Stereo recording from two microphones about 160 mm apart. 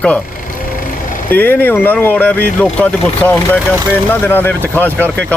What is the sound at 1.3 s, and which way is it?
Speech, 10° left (ahead or behind).